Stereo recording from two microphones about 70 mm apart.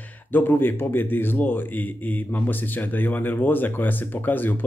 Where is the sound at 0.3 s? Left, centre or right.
Left.